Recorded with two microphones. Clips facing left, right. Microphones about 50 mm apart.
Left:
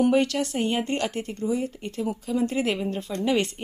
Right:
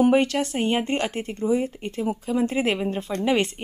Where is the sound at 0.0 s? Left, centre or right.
Right.